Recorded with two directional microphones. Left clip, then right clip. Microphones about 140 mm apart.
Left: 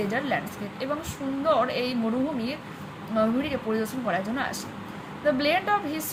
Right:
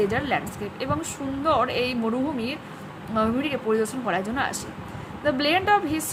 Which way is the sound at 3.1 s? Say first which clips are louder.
Right 1 dB; 35° right (ahead or behind).